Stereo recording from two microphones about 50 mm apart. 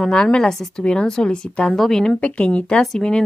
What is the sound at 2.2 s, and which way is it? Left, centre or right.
Speech, left.